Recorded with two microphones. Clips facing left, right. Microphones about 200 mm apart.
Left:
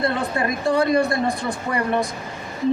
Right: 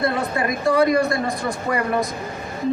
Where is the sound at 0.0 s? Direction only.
30° left (ahead or behind).